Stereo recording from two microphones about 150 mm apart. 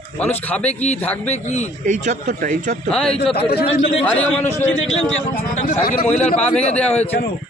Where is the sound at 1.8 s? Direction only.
55° right (ahead or behind).